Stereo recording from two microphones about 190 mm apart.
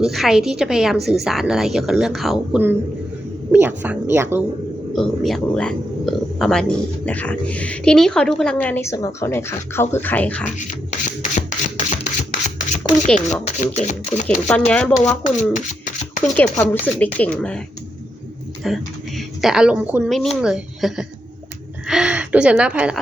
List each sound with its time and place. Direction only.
0.0 s a woman's voice: centre (ahead or behind)
4.9 s speech: centre (ahead or behind)
11.9 s a sound: 40° left (ahead or behind)
13.1 s speech: 40° left (ahead or behind)
14.3 s a woman's voice: 5° left (ahead or behind)
18.6 s a woman's voice: centre (ahead or behind)
20.1 s a woman's voice: centre (ahead or behind)